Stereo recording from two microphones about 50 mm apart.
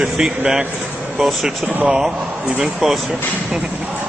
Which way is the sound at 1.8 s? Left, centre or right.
Centre.